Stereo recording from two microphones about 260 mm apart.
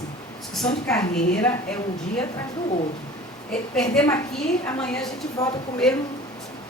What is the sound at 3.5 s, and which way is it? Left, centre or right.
A woman's voice, centre.